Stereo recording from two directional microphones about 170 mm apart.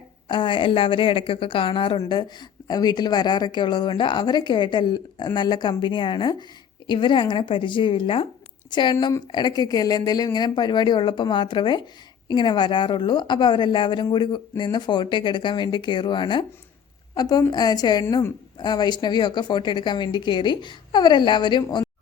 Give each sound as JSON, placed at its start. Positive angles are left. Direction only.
{"t": 0.3, "sound": "a woman's voice", "side_deg": 30}